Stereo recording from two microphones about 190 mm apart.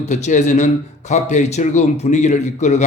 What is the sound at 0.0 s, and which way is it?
A man's voice, 35° left (ahead or behind).